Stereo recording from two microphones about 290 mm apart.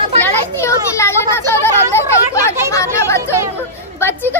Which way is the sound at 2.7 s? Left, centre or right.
Centre.